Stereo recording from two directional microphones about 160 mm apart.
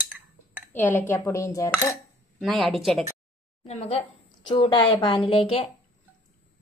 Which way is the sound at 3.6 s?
40° left (ahead or behind).